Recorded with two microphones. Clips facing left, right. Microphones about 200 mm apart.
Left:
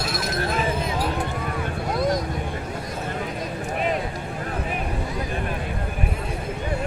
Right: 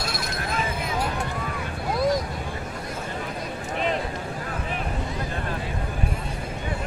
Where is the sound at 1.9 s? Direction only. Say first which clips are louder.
Right 1 dB; centre (ahead or behind).